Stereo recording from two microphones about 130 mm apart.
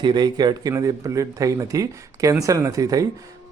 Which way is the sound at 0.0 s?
35° right (ahead or behind).